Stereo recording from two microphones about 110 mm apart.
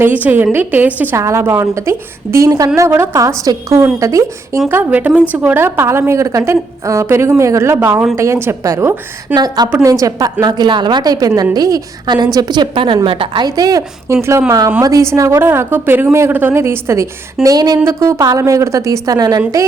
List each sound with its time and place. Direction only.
0.0 s a woman's voice: 15° right (ahead or behind)
1.1 s a woman's voice: 25° right (ahead or behind)
4.7 s a woman's voice: 15° right (ahead or behind)
9.3 s a woman's voice: 40° right (ahead or behind)